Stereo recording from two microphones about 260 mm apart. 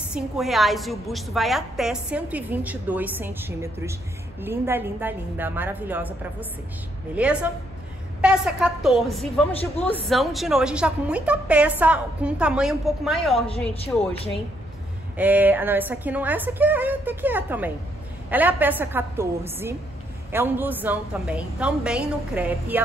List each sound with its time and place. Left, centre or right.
0.1 s a woman's voice: centre
7.2 s a woman's voice: centre
13.7 s speech: left
15.1 s a woman's voice: centre